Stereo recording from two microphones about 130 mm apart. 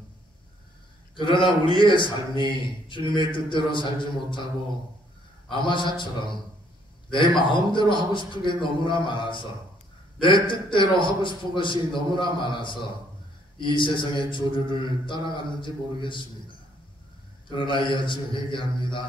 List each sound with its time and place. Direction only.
1.1 s a man's voice: 40° left (ahead or behind)
5.5 s a man's voice: 40° left (ahead or behind)
17.5 s a man's voice: 40° left (ahead or behind)